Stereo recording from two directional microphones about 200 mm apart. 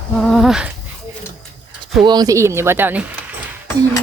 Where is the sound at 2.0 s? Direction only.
20° right (ahead or behind).